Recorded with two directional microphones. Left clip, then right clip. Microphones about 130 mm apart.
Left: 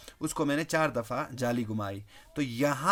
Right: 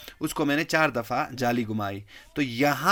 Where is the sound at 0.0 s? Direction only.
15° right (ahead or behind).